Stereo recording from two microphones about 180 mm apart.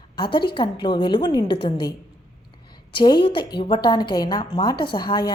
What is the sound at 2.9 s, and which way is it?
A woman's voice, 25° left (ahead or behind).